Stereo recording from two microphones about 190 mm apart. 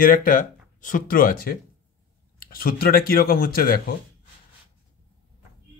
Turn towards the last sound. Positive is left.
turn(degrees=50)  # may be behind; listen again after turning